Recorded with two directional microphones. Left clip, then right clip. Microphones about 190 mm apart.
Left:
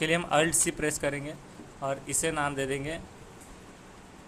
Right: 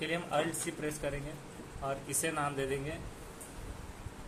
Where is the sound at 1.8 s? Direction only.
20° left (ahead or behind).